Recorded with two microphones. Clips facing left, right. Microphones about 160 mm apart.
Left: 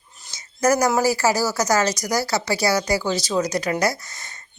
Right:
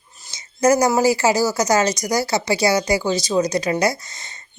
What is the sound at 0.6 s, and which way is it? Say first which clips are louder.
Speech: right 3 dB; 20° right (ahead or behind).